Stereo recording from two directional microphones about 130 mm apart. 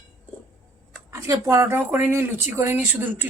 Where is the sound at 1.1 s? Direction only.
25° right (ahead or behind).